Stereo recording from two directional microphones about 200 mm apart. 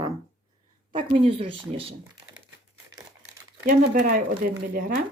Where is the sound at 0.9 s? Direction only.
25° right (ahead or behind).